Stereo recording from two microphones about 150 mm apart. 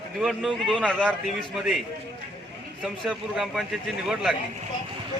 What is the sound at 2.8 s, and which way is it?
A man's voice, 5° right (ahead or behind).